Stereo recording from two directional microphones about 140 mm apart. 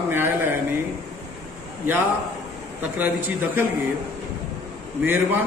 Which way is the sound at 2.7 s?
15° right (ahead or behind).